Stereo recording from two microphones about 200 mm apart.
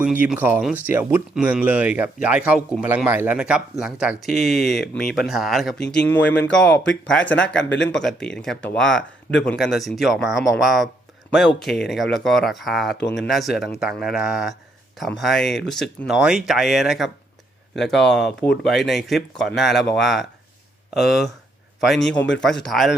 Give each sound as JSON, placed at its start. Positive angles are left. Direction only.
{"t": 0.0, "sound": "speech", "side_deg": -5}